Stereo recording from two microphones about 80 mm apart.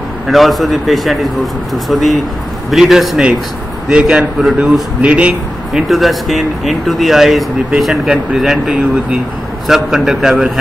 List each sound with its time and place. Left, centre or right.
0.3 s a man's voice: centre
5.0 s a man's voice: centre
5.7 s speech: centre